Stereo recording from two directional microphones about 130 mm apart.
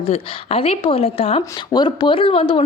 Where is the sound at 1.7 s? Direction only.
35° left (ahead or behind).